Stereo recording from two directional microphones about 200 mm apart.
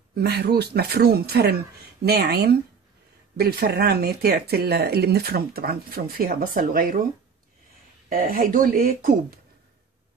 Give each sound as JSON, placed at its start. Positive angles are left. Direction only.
{"t": 0.1, "sound": "speech", "side_deg": -55}
{"t": 8.1, "sound": "speech", "side_deg": -45}